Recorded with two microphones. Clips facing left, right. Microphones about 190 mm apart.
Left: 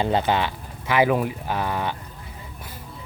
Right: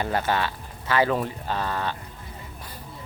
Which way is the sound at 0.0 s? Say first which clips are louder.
Left 3 dB; 20° left (ahead or behind).